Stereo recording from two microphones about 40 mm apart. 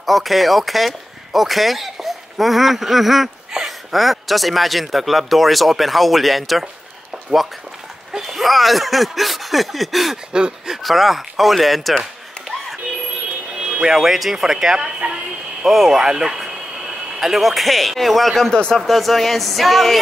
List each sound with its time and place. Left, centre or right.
0.0 s speech: centre
8.2 s speech: centre
10.3 s speech: right
10.8 s speech: centre
13.6 s speech: centre
18.5 s speech: centre
18.8 s speech: centre